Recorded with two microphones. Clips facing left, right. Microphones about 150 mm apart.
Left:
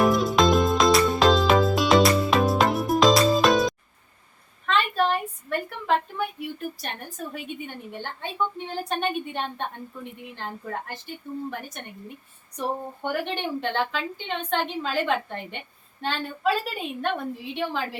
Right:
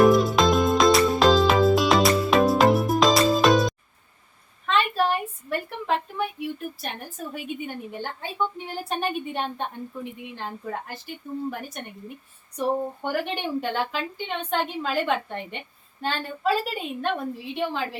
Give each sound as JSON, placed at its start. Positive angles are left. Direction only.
{"t": 0.0, "sound": "music", "side_deg": 0}
{"t": 4.6, "sound": "a sound", "side_deg": 0}
{"t": 7.9, "sound": "a woman's voice", "side_deg": -5}
{"t": 13.1, "sound": "a woman's voice", "side_deg": -10}